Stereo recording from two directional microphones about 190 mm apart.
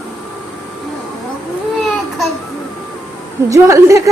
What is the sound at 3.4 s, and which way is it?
Speech, 15° right (ahead or behind).